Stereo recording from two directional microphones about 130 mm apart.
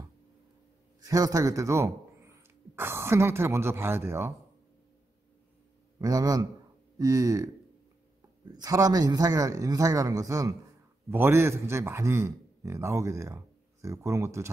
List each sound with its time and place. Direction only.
1.0 s a man's voice: 25° right (ahead or behind)
5.9 s a man's voice: 30° right (ahead or behind)